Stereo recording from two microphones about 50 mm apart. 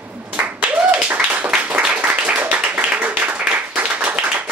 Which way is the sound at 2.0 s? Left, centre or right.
Right.